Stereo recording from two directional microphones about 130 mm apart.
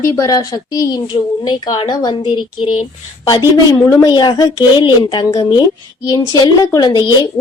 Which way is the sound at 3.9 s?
30° left (ahead or behind).